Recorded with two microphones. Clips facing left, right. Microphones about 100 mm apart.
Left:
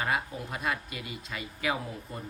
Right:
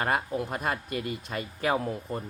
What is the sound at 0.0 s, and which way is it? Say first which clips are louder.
Speech: right 4 dB; 50° right (ahead or behind).